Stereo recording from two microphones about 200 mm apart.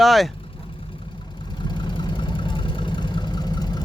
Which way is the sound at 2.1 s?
25° left (ahead or behind).